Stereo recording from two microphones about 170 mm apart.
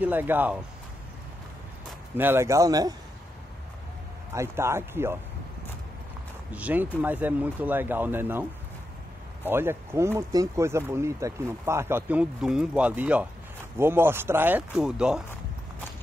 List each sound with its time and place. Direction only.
0.0 s speech: 10° right (ahead or behind)
2.1 s speech: 15° right (ahead or behind)
4.3 s speech: 15° right (ahead or behind)
6.5 s speech: 10° right (ahead or behind)